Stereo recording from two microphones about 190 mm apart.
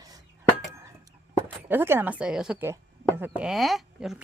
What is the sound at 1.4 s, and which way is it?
Speech, 10° right (ahead or behind).